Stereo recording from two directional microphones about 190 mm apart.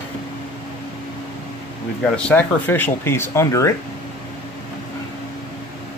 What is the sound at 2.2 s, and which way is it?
Speech, 10° left (ahead or behind).